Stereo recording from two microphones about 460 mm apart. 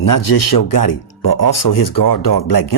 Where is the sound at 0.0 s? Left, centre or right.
Left.